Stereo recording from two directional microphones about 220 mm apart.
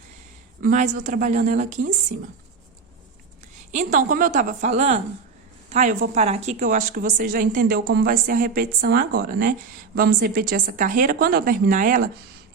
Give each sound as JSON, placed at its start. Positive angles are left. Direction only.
{"t": 0.6, "sound": "a woman's voice", "side_deg": -35}
{"t": 3.7, "sound": "a woman's voice", "side_deg": -35}